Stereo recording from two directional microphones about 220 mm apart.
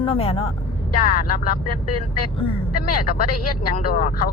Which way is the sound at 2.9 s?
40° left (ahead or behind).